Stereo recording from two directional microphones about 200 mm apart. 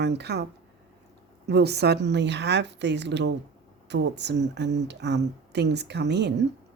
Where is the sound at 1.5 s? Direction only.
55° right (ahead or behind).